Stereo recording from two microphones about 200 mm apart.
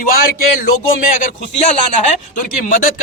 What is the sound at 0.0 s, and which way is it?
A man's voice, 45° left (ahead or behind).